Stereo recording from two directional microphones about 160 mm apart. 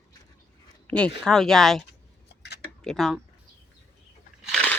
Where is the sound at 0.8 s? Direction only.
5° left (ahead or behind).